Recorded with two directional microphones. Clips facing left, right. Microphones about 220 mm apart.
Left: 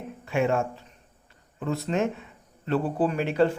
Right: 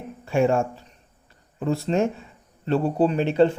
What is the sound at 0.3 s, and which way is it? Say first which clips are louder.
Speech: right 4 dB; 30° right (ahead or behind).